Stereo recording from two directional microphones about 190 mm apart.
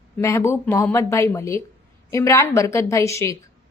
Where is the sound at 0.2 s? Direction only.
15° left (ahead or behind).